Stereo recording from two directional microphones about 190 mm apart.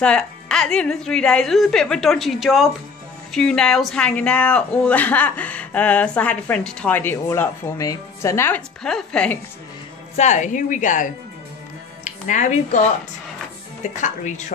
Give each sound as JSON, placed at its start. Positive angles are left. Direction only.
{"t": 0.0, "sound": "speech", "side_deg": 5}
{"t": 10.1, "sound": "a woman's voice", "side_deg": 40}
{"t": 13.9, "sound": "a woman's voice", "side_deg": 40}